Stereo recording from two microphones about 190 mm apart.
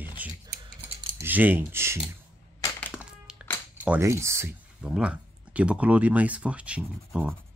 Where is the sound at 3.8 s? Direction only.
15° right (ahead or behind).